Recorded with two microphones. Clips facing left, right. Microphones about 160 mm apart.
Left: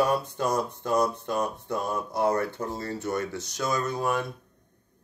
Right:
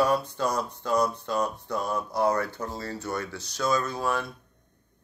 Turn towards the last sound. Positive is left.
turn(degrees=20)  # may be behind; listen again after turning